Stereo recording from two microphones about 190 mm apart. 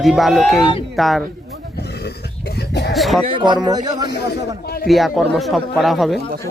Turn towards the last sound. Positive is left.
turn(degrees=0)  # may be behind; listen again after turning